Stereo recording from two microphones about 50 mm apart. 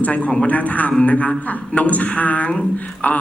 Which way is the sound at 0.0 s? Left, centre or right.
Left.